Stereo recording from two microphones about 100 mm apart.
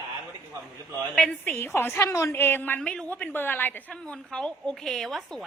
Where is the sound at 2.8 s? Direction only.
10° left (ahead or behind).